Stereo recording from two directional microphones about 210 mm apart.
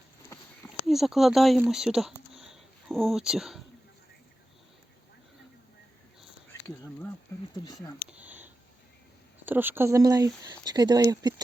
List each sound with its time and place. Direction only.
0.9 s speech: centre (ahead or behind)
7.5 s speech: 20° left (ahead or behind)
8.0 s a sound: 5° right (ahead or behind)
9.5 s speech: 10° right (ahead or behind)